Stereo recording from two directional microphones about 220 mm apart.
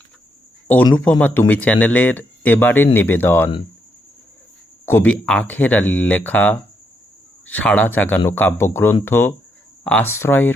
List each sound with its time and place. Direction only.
1.2 s speech: 10° left (ahead or behind)
4.9 s speech: 5° left (ahead or behind)